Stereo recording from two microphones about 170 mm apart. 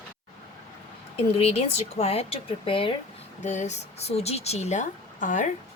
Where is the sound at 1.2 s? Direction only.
35° left (ahead or behind).